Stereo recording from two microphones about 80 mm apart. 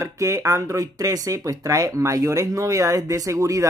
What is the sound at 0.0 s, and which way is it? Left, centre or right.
Speech, right.